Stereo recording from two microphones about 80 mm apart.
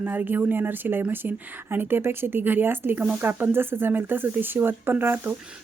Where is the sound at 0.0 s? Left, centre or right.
Right.